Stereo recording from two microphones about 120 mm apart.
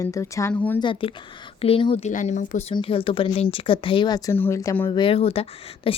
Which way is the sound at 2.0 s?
85° left.